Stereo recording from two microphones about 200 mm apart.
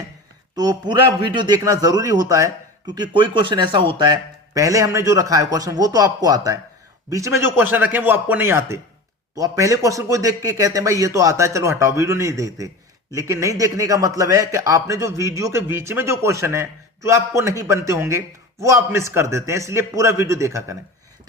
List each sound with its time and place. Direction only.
0.5 s a man's voice: 20° right (ahead or behind)